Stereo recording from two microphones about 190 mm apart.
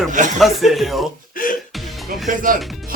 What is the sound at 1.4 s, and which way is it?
Music, 50° left (ahead or behind).